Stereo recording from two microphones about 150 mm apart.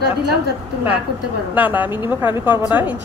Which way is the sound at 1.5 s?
10° right (ahead or behind).